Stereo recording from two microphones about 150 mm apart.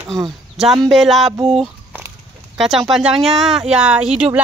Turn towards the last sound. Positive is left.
turn(degrees=-5)  # may be behind; listen again after turning